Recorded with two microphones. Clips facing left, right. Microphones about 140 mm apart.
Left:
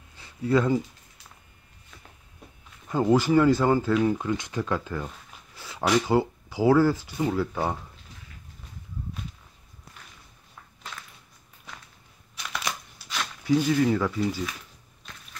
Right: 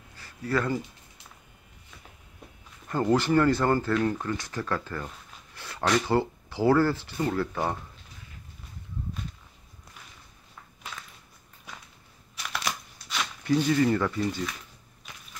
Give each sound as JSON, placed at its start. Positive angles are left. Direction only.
{"t": 0.2, "sound": "speech", "side_deg": 20}
{"t": 2.9, "sound": "speech", "side_deg": 10}
{"t": 12.4, "sound": "a sound", "side_deg": 0}
{"t": 13.1, "sound": "speech", "side_deg": 5}